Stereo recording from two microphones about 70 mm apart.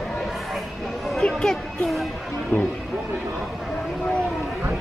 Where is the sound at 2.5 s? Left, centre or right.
Left.